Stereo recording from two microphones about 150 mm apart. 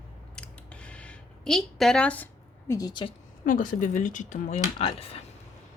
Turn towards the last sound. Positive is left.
turn(degrees=40)  # may be behind; listen again after turning